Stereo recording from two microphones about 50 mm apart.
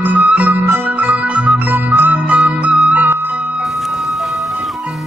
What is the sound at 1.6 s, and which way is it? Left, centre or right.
Music, right.